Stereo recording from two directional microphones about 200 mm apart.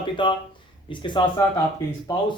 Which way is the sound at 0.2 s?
25° left (ahead or behind).